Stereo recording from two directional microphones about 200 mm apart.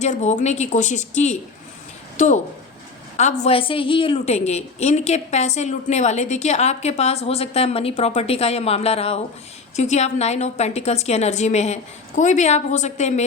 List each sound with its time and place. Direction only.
0.0 s a woman's voice: 35° left (ahead or behind)